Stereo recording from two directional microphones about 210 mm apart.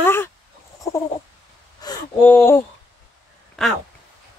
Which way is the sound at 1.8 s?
20° left (ahead or behind).